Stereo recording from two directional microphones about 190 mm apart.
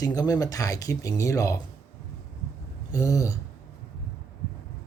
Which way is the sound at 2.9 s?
15° left (ahead or behind).